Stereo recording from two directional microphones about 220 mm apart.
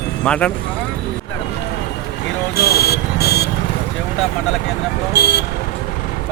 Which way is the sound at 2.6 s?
45° left (ahead or behind).